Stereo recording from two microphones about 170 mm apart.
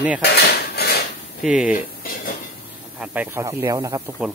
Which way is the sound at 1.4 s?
5° right (ahead or behind).